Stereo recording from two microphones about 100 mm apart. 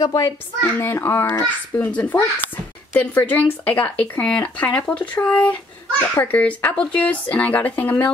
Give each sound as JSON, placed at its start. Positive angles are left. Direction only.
{"t": 0.0, "sound": "a child's voice", "side_deg": 35}
{"t": 0.6, "sound": "speech", "side_deg": 25}